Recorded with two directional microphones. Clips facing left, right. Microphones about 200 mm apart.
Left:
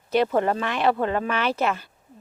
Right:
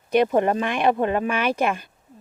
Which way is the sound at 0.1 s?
15° right (ahead or behind).